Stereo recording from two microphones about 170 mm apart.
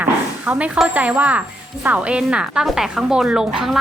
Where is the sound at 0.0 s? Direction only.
10° right (ahead or behind).